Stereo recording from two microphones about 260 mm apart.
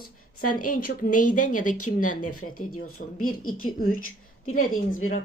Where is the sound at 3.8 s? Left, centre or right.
Left.